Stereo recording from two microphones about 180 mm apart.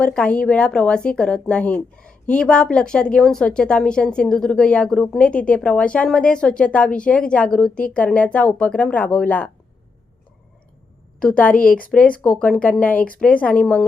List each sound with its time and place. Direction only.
0.0 s speech: 5° left (ahead or behind)
11.2 s a woman's voice: 10° left (ahead or behind)
11.5 s speech: 50° left (ahead or behind)
12.2 s a woman's voice: 5° left (ahead or behind)